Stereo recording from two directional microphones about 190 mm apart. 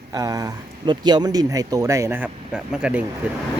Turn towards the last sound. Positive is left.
turn(degrees=-5)  # may be behind; listen again after turning